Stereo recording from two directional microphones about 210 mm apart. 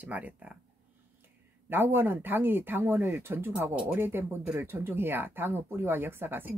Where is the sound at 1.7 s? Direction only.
10° right (ahead or behind).